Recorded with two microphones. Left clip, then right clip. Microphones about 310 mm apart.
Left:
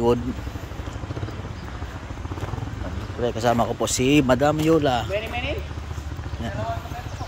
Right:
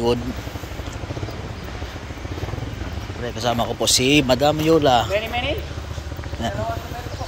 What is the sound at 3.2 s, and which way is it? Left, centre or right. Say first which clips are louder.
A man's voice: left 1 dB; centre.